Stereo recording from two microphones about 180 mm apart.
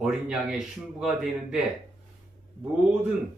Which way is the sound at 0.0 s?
5° right (ahead or behind).